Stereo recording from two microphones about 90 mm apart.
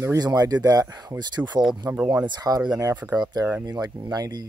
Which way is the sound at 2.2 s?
45° right (ahead or behind).